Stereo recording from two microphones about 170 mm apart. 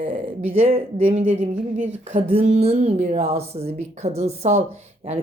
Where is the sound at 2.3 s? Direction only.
35° right (ahead or behind).